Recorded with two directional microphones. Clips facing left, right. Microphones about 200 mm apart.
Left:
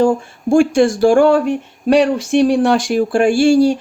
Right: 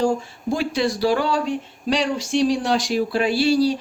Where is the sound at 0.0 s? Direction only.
50° left (ahead or behind).